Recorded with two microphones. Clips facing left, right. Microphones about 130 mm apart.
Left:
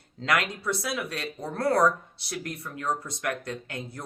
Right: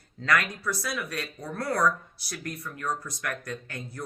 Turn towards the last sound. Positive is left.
turn(degrees=25)  # may be behind; listen again after turning